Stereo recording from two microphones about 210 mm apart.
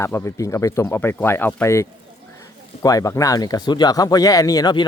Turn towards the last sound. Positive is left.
turn(degrees=20)  # may be behind; listen again after turning